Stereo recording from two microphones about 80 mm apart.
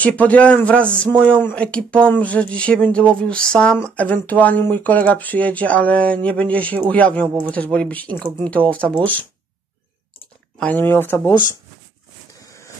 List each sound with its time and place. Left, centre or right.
0.0 s speech: centre
10.6 s speech: left
12.4 s a sound: left